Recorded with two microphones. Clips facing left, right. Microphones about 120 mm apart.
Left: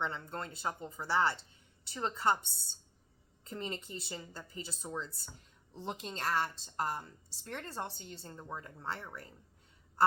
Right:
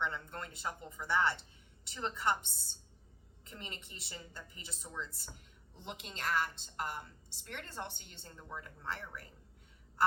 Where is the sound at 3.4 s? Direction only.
30° left (ahead or behind).